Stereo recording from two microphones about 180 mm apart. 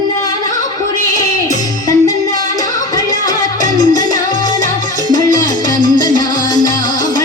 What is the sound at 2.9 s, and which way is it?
Music, 20° left (ahead or behind).